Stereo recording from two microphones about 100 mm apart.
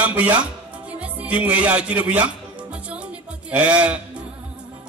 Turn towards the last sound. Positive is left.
turn(degrees=-15)  # may be behind; listen again after turning